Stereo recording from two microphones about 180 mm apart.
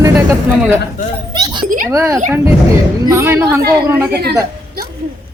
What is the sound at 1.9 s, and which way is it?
Speech, 15° right (ahead or behind).